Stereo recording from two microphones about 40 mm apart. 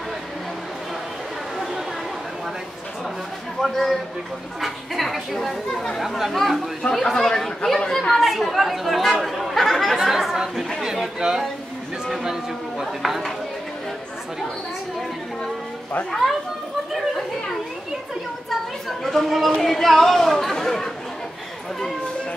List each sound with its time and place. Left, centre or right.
3.5 s a man's voice: centre
6.8 s speech: centre
8.1 s speech: centre
12.8 s speech: centre
16.1 s speech: centre
18.5 s a woman's voice: centre